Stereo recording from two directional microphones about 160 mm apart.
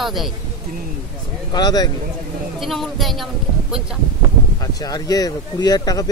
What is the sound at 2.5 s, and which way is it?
A woman's voice, centre (ahead or behind).